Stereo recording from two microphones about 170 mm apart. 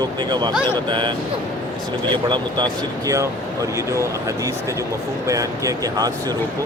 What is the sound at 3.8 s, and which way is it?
Speech, 20° right (ahead or behind).